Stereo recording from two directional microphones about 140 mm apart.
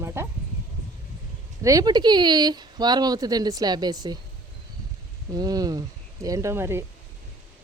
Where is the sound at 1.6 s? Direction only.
25° right (ahead or behind).